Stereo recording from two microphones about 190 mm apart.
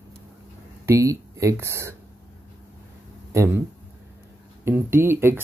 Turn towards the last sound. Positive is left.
turn(degrees=-10)  # may be behind; listen again after turning